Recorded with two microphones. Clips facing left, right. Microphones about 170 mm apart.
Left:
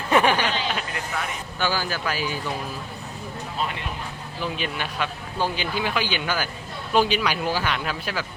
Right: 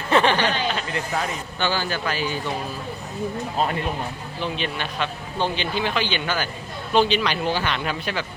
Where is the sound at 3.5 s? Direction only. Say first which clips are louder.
Right 5 dB; 45° right (ahead or behind).